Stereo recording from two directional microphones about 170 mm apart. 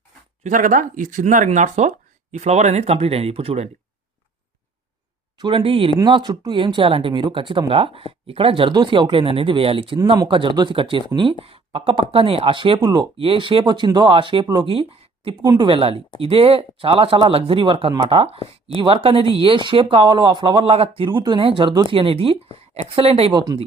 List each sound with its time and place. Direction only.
0.4 s speech: 50° right (ahead or behind)
5.4 s speech: 30° right (ahead or behind)
23.3 s speech: 25° right (ahead or behind)